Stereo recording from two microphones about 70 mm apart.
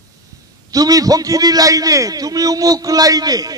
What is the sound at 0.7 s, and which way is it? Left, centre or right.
A man's voice, right.